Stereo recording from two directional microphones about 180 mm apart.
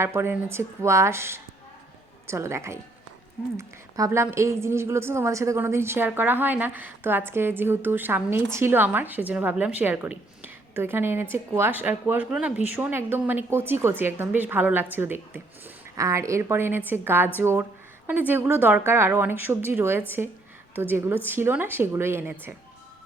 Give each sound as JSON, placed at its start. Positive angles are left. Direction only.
{"t": 0.0, "sound": "a woman's voice", "side_deg": -15}